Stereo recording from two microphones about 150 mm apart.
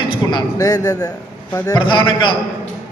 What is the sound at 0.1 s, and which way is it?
A man's voice, 30° left (ahead or behind).